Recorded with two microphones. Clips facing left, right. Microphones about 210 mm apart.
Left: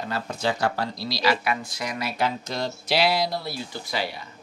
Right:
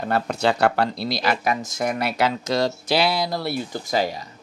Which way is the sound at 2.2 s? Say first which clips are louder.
Right 5 dB; 90° right.